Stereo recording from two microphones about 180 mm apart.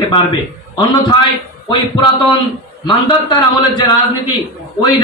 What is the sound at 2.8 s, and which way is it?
A man's voice, 25° left (ahead or behind).